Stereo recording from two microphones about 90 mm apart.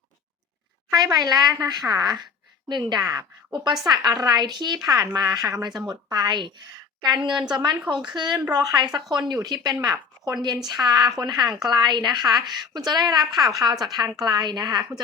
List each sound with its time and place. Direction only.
0.9 s a woman's voice: 50° right (ahead or behind)